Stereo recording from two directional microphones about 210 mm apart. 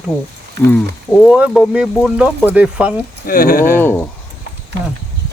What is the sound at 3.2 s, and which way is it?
Speech, 45° left (ahead or behind).